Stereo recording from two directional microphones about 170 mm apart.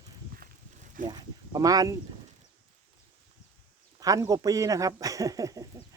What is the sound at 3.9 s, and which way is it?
Speech, 20° right (ahead or behind).